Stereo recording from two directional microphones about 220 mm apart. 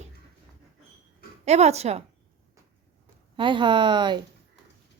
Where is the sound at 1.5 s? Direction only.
30° right (ahead or behind).